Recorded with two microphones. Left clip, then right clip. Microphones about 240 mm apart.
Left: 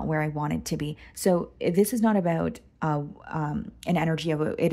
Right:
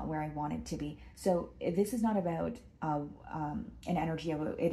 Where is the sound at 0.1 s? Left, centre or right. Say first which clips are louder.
Left 9 dB; left.